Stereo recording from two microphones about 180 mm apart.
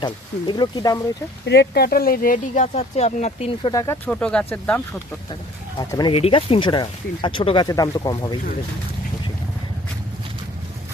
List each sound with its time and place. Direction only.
0.0 s speech: 25° left (ahead or behind)
1.5 s speech: 65° left (ahead or behind); by 3.7 s 35° left (ahead or behind)
3.7 s speech: 15° left (ahead or behind)
4.1 s speech: 5° left (ahead or behind)
5.9 s speech: 25° left (ahead or behind)